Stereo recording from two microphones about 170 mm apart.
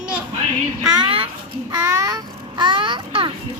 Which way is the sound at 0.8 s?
30° right (ahead or behind).